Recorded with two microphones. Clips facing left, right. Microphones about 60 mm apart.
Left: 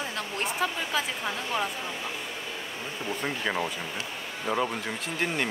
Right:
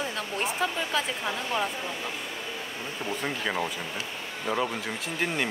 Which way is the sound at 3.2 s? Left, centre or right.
Centre.